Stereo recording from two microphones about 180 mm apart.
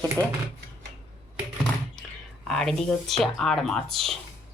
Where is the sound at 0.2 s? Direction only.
20° right (ahead or behind).